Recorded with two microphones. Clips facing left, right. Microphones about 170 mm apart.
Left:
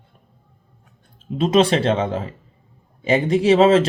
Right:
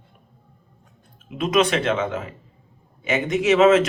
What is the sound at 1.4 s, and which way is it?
Speech, 30° left (ahead or behind).